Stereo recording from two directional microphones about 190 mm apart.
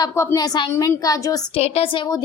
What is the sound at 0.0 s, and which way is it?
A woman's voice, 15° left (ahead or behind).